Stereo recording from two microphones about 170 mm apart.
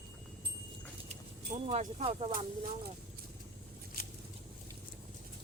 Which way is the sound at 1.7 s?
35° right (ahead or behind).